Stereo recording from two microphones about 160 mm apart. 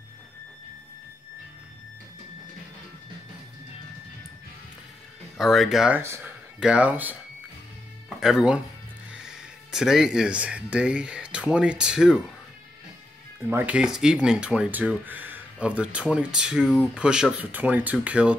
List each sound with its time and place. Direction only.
5.4 s speech: centre (ahead or behind)
5.9 s speech: 15° right (ahead or behind)
8.2 s speech: 5° right (ahead or behind)
13.5 s speech: 10° right (ahead or behind)